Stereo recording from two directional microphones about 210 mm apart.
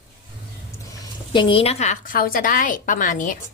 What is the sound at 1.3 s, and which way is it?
A woman's voice, 25° left (ahead or behind).